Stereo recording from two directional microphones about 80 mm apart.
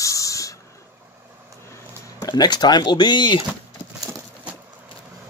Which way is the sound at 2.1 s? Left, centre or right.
Left.